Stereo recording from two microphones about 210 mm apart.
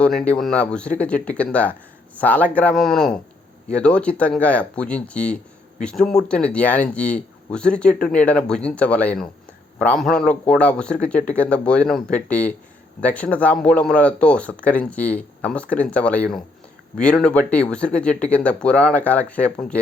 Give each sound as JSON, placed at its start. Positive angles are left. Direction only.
{"t": 0.0, "sound": "speech", "side_deg": 5}